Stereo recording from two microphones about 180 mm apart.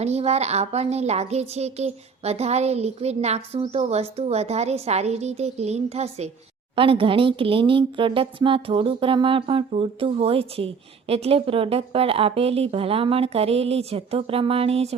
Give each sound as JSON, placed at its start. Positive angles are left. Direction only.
{"t": 0.0, "sound": "a woman's voice", "side_deg": -35}